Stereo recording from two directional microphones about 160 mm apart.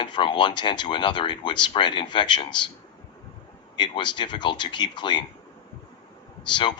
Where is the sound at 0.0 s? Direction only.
30° left (ahead or behind).